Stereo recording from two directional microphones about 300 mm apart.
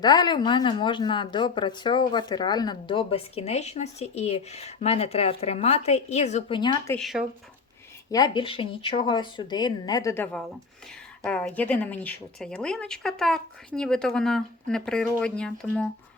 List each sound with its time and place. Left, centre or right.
0.0 s a woman's voice: centre
8.1 s a woman's voice: centre